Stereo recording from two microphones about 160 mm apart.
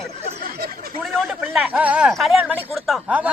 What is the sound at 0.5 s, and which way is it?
Speech, 75° right (ahead or behind).